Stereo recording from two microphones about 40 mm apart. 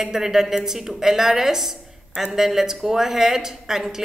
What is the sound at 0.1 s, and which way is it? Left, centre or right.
A woman's voice, centre.